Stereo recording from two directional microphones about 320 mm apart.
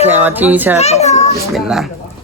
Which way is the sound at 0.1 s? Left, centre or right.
Centre.